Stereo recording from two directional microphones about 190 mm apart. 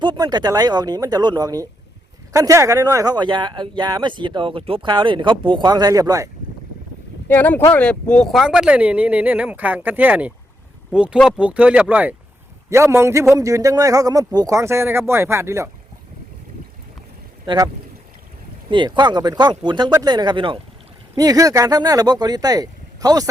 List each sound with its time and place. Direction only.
0.0 s speech: 25° right (ahead or behind)
7.3 s speech: 10° left (ahead or behind); by 15.7 s 15° right (ahead or behind)
17.4 s speech: 25° right (ahead or behind)
18.7 s speech: 25° right (ahead or behind)